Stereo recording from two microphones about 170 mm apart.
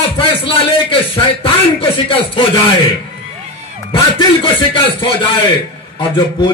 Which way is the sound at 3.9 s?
30° left (ahead or behind).